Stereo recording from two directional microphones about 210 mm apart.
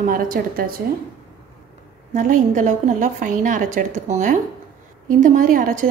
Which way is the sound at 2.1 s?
35° right (ahead or behind).